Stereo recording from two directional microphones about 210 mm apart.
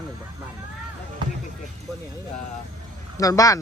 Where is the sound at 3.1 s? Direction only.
15° left (ahead or behind).